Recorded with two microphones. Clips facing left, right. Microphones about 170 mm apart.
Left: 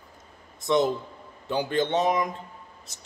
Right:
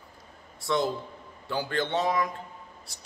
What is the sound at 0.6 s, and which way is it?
A man's voice, 20° left (ahead or behind).